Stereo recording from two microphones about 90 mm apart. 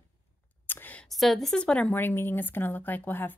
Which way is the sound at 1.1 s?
Centre (ahead or behind).